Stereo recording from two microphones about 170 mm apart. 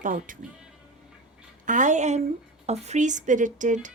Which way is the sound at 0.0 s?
50° right (ahead or behind).